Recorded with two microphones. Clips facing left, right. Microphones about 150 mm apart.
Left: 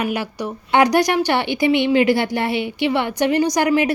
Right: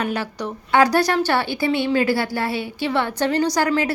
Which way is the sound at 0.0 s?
10° left (ahead or behind).